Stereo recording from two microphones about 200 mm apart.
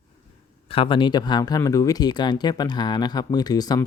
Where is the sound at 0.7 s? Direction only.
25° left (ahead or behind).